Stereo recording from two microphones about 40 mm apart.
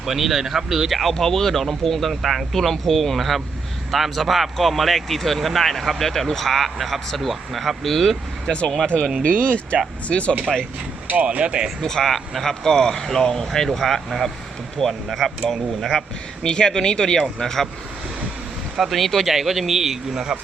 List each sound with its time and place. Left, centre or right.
0.0 s speech: centre
1.1 s speech: centre
8.9 s speech: left
11.1 s speech: right
11.8 s speech: centre
16.4 s speech: centre
18.8 s a man's voice: centre